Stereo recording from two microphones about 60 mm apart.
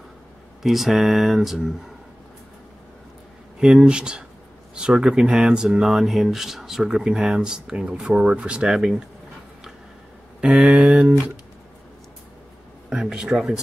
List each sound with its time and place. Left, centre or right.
0.6 s speech: centre
3.5 s speech: centre
10.4 s speech: centre
12.9 s speech: centre